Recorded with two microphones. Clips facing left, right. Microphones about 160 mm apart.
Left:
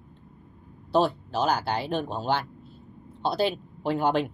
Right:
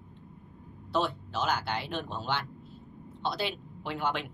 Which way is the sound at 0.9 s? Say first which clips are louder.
Left 7 dB; 35° left (ahead or behind).